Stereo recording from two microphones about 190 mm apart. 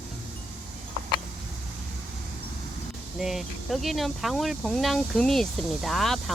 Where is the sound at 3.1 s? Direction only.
Centre (ahead or behind).